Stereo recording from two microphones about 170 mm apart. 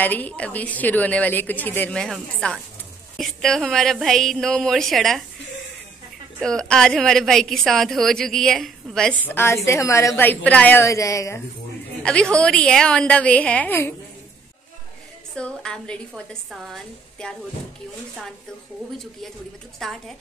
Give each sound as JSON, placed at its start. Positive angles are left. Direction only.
{"t": 0.0, "sound": "a woman's voice", "side_deg": 10}
{"t": 6.4, "sound": "a woman's voice", "side_deg": 5}
{"t": 12.0, "sound": "a woman's voice", "side_deg": 5}
{"t": 15.3, "sound": "a woman's voice", "side_deg": 5}
{"t": 19.8, "sound": "a woman's voice", "side_deg": 0}